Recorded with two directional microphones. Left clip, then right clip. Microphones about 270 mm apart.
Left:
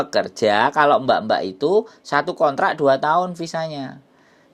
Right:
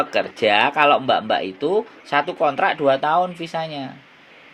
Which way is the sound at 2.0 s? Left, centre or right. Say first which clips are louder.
Right 2 dB; left.